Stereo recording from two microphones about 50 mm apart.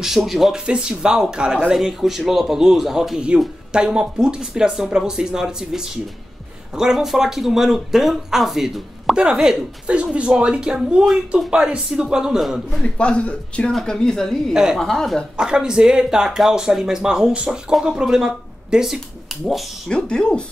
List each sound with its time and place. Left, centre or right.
0.2 s a man's voice: centre
0.7 s a man's voice: centre
3.7 s speech: centre
9.1 s speech: centre
12.8 s speech: left
13.7 s speech: centre
14.5 s speech: centre
14.8 s speech: centre
15.3 s speech: centre
20.1 s speech: centre